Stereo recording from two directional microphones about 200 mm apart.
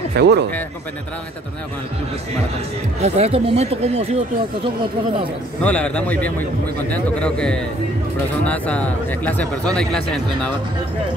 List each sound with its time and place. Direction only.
0.1 s speech: 55° right (ahead or behind)
3.0 s speech: 30° right (ahead or behind)
5.6 s a man's voice: 5° left (ahead or behind)